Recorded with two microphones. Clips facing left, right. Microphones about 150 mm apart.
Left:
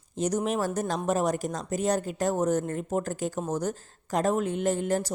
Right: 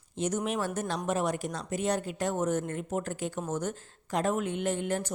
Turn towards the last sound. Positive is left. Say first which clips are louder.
# left 4 dB
turn(degrees=40)  # may be behind; listen again after turning